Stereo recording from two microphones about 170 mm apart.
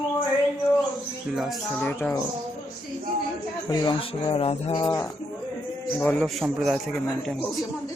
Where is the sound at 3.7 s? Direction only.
25° left (ahead or behind).